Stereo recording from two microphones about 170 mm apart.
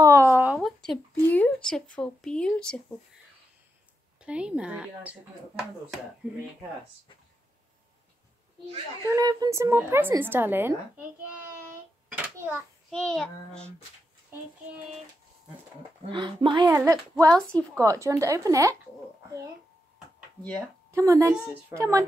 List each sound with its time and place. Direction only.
0.0 s a sound: 15° right (ahead or behind); by 0.9 s centre (ahead or behind)
1.1 s speech: 10° left (ahead or behind)
4.2 s a woman's voice: 5° right (ahead or behind)
6.2 s a woman's voice: 10° right (ahead or behind)
9.0 s a woman's voice: 20° right (ahead or behind)
12.1 s a sound: 10° right (ahead or behind)
12.9 s a child's voice: 5° left (ahead or behind)
16.1 s a woman's voice: 30° right (ahead or behind)
17.3 s speech: 5° left (ahead or behind)
17.7 s a woman's voice: 15° right (ahead or behind)
20.9 s a woman's voice: 20° right (ahead or behind)